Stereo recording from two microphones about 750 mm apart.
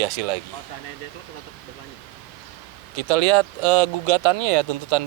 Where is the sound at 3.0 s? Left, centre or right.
Right.